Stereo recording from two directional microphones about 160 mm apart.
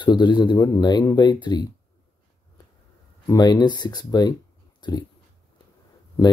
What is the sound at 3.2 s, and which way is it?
Speech, 25° left (ahead or behind).